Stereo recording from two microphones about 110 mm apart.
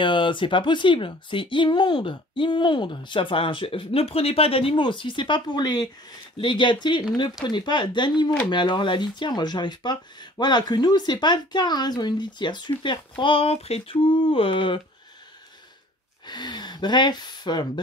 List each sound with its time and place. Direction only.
0.0 s speech: 50° left (ahead or behind)
16.3 s speech: 40° left (ahead or behind)